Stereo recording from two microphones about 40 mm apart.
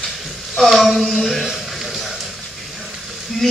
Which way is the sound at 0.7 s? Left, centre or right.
Centre.